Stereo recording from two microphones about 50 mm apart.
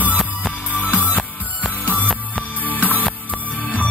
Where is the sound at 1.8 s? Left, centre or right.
Left.